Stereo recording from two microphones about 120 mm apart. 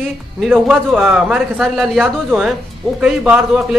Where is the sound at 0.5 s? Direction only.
5° right (ahead or behind).